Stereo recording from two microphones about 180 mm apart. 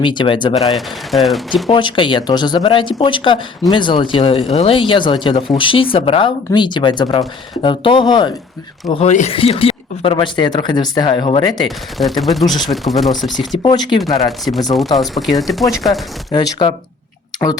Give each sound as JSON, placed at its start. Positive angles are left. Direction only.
{"t": 0.0, "sound": "speech", "side_deg": 25}
{"t": 0.7, "sound": "speech", "side_deg": 0}
{"t": 1.7, "sound": "speech", "side_deg": 25}
{"t": 8.9, "sound": "speech", "side_deg": 35}
{"t": 11.9, "sound": "speech", "side_deg": 0}
{"t": 13.5, "sound": "speech", "side_deg": 25}
{"t": 14.3, "sound": "speech", "side_deg": 0}
{"t": 16.3, "sound": "speech", "side_deg": 25}